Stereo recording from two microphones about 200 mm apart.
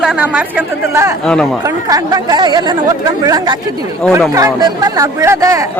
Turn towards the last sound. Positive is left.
turn(degrees=-15)  # may be behind; listen again after turning